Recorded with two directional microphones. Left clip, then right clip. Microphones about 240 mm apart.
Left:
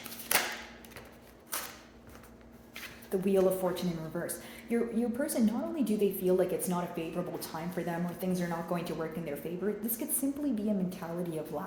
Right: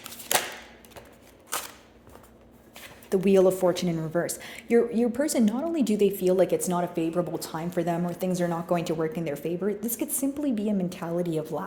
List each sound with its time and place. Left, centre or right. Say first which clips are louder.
3.1 s a woman's voice: right 7 dB; right